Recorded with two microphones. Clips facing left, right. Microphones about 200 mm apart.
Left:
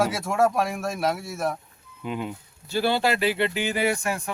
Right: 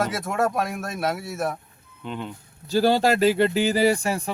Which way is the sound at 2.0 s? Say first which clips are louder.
Left 2 dB; 5° left (ahead or behind).